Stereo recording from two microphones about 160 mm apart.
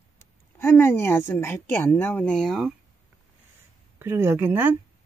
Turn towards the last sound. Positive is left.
turn(degrees=-10)  # may be behind; listen again after turning